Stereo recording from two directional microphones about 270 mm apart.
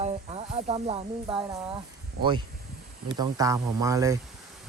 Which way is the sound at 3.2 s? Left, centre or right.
Centre.